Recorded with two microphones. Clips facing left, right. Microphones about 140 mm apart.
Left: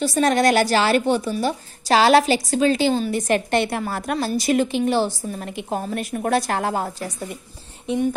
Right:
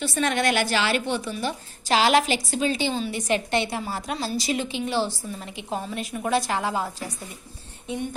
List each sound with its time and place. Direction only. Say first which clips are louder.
0.0 s a woman's voice: left 6 dB; 40° left (ahead or behind)